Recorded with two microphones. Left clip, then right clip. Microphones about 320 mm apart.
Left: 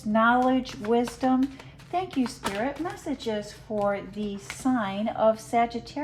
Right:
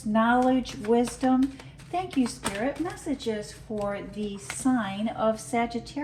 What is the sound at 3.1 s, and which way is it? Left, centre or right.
Speech, left.